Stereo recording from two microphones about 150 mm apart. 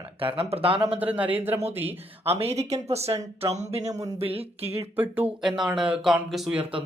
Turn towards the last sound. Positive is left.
turn(degrees=0)  # may be behind; listen again after turning